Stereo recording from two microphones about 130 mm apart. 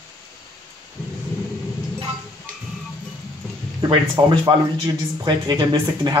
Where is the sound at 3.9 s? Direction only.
35° right (ahead or behind).